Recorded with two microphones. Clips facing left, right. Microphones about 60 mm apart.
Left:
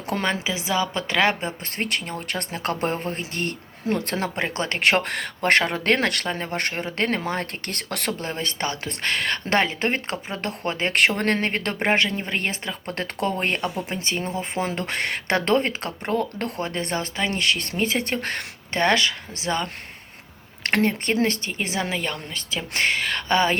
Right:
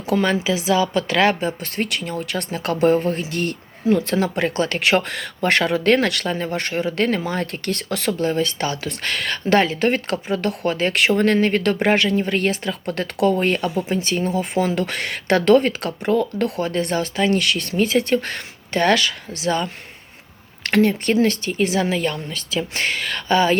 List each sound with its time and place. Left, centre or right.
0.1 s speech: left
8.2 s speech: left
11.5 s speech: left